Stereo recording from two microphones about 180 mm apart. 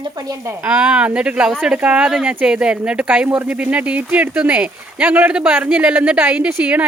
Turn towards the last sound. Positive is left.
turn(degrees=-10)  # may be behind; listen again after turning